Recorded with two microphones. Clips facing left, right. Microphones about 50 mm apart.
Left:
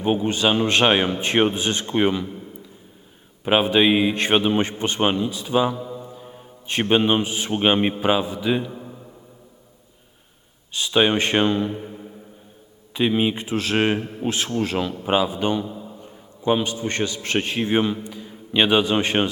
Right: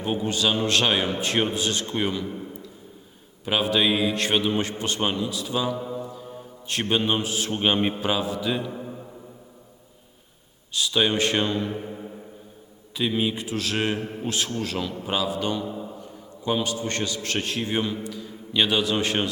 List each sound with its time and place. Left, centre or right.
0.0 s a man's voice: left
3.4 s a man's voice: left
5.7 s mantra: centre
6.1 s a man's voice: centre
8.7 s a sound: centre
10.8 s a man's voice: left
11.7 s a sound: centre
13.0 s a man's voice: left
15.6 s a sound: centre
16.4 s a man's voice: left